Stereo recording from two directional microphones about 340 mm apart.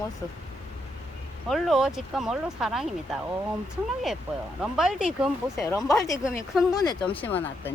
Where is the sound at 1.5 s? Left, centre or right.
Centre.